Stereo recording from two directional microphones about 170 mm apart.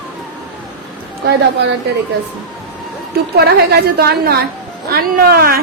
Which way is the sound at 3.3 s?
70° right (ahead or behind).